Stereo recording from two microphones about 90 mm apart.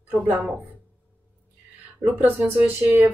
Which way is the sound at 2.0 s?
20° right (ahead or behind).